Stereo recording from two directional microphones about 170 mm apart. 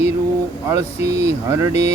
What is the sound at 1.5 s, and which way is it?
Speech, 15° right (ahead or behind).